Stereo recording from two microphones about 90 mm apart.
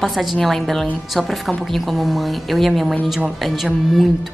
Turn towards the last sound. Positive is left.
turn(degrees=0)  # may be behind; listen again after turning